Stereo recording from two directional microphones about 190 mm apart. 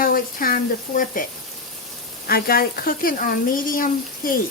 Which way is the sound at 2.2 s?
50° left (ahead or behind).